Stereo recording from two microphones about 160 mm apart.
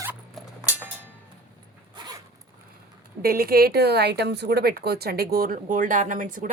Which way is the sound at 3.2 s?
70° right (ahead or behind).